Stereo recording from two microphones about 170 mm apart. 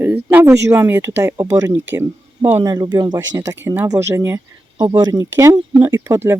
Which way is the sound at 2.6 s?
25° right (ahead or behind).